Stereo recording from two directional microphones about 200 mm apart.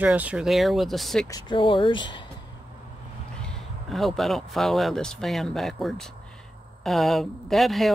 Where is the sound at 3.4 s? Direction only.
Centre (ahead or behind).